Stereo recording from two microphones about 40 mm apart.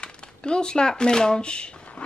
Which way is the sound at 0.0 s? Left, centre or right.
Left.